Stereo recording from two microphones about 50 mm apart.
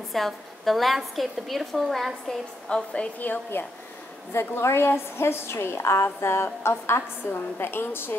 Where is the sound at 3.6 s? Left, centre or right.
Left.